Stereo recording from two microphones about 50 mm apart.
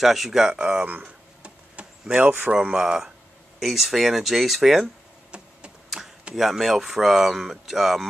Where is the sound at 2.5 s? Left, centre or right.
Centre.